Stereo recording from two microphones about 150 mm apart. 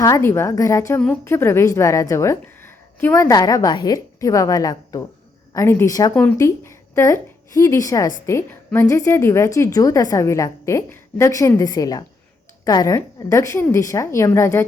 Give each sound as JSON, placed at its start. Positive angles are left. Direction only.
{"t": 0.0, "sound": "a woman's voice", "side_deg": 20}